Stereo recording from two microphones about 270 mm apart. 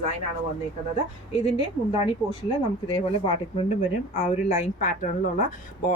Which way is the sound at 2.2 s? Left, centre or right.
Centre.